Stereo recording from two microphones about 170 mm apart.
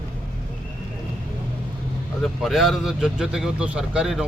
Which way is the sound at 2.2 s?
Centre (ahead or behind).